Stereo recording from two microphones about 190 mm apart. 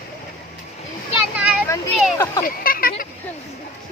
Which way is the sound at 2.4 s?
50° left (ahead or behind).